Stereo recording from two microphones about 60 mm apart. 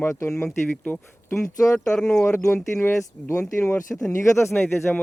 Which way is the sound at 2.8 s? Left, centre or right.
Left.